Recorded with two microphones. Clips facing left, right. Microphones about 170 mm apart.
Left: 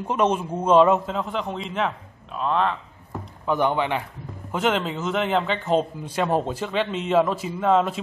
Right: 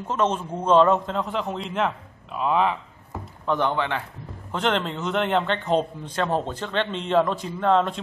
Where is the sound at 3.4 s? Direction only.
10° left (ahead or behind).